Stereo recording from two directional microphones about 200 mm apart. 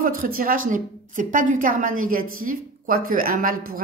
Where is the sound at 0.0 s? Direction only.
45° right (ahead or behind).